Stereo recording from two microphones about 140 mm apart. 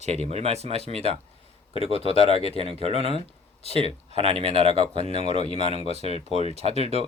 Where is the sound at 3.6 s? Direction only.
45° left (ahead or behind).